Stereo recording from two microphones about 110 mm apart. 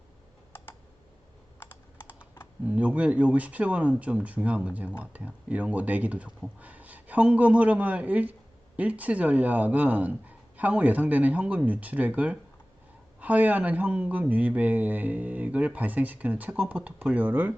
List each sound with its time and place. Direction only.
0.5 s computer keyboard: 20° left (ahead or behind)
2.6 s speech: 10° right (ahead or behind)